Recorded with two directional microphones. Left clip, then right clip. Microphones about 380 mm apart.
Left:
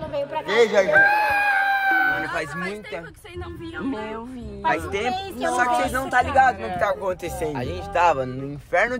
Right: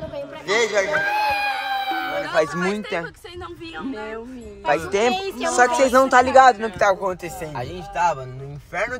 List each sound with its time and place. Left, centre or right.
0.5 s a sound: centre; by 3.1 s right
4.6 s speech: centre
7.3 s speech: centre